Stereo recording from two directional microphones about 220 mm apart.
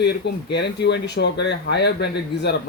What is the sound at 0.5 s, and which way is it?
Speech, 50° left (ahead or behind).